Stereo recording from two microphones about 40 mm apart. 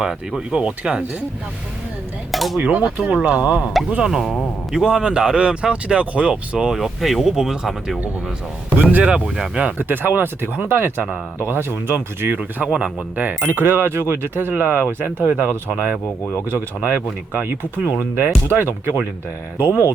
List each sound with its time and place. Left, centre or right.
0.0 s speech: centre
0.5 s speech: right
2.3 s speech: centre
2.6 s speech: right
3.8 s speech: centre
6.7 s speech: centre
8.8 s speech: right
9.2 s speech: centre
9.7 s speech: right
12.8 s speech: right
13.5 s speech: right
17.3 s speech: right
17.7 s speech: right
18.1 s speech: right